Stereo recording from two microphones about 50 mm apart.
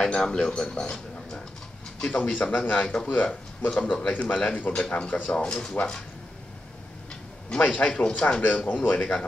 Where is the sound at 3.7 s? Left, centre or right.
Left.